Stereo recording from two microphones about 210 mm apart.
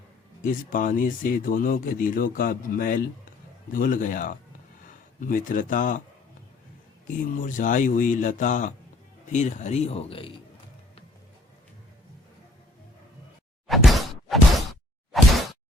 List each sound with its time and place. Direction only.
0.4 s speech: 40° left (ahead or behind)
7.3 s speech: 40° left (ahead or behind)
13.7 s a sound: centre (ahead or behind)